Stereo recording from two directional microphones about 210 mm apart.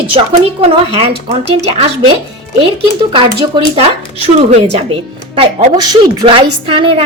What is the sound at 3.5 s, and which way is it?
Speech, 20° right (ahead or behind).